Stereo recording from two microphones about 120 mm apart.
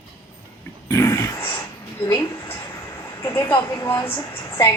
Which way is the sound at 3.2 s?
25° left (ahead or behind).